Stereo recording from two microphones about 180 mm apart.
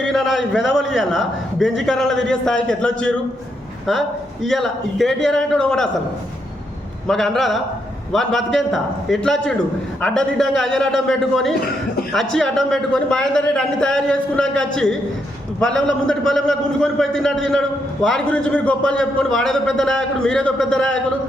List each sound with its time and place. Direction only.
0.0 s a man's voice: 5° left (ahead or behind)
4.4 s a man's voice: centre (ahead or behind)
7.1 s a man's voice: centre (ahead or behind)